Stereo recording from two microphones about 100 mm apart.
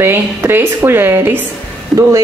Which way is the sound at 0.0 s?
25° right (ahead or behind).